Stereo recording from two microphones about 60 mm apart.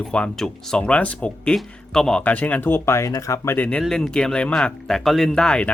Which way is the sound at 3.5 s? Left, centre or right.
Left.